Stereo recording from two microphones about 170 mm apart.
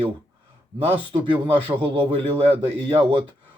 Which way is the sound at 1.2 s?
30° right (ahead or behind).